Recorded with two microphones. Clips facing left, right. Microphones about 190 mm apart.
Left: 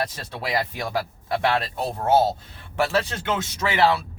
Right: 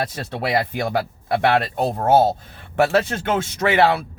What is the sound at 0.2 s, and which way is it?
Speech, 60° right (ahead or behind).